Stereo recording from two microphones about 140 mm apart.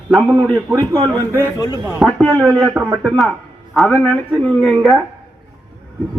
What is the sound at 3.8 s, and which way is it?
Speech, 10° left (ahead or behind).